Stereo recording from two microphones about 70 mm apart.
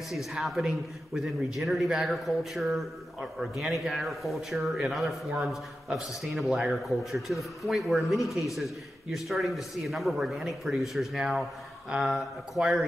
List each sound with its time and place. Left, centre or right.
0.1 s a man's voice: centre